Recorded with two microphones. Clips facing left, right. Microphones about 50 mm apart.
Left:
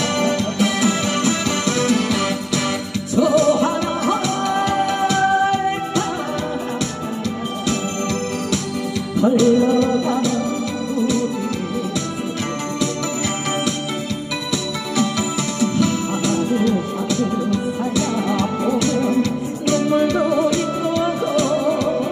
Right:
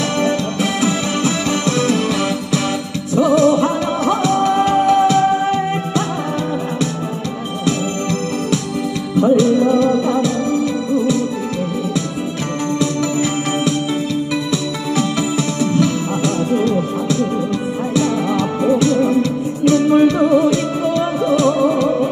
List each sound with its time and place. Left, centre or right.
0.2 s music: right
9.2 s music: right
14.5 s music: right
18.6 s music: right